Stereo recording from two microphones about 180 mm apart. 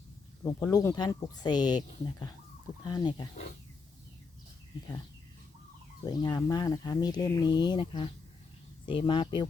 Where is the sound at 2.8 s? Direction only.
25° left (ahead or behind).